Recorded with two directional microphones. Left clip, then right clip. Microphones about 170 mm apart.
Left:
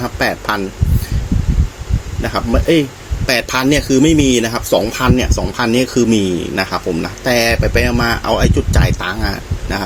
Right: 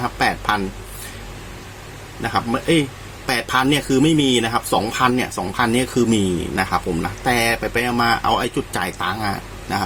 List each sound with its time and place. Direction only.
0.0 s speech: 15° left (ahead or behind)
2.2 s speech: 15° left (ahead or behind)